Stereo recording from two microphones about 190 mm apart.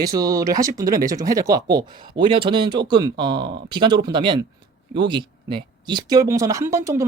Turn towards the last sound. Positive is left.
turn(degrees=-15)  # may be behind; listen again after turning